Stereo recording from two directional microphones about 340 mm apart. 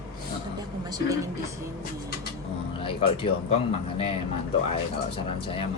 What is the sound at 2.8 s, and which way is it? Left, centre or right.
Speech, centre.